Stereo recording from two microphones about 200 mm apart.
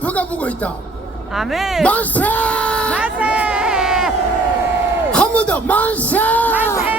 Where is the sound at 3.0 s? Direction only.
5° right (ahead or behind).